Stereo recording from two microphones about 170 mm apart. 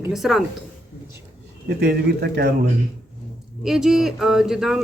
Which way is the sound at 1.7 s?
70° right (ahead or behind).